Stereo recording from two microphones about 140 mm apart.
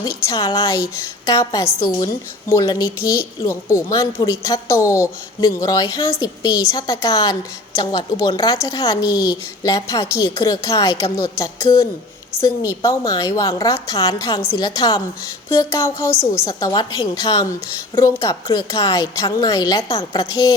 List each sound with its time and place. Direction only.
0.0 s a woman's voice: 25° left (ahead or behind)